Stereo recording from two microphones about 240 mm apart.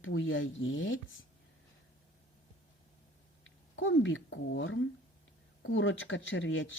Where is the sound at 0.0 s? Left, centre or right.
Left.